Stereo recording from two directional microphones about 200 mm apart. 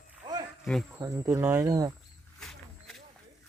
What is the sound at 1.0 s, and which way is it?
Speech, 15° right (ahead or behind).